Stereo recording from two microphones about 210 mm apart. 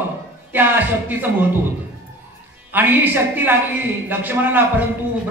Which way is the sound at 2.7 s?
10° right (ahead or behind).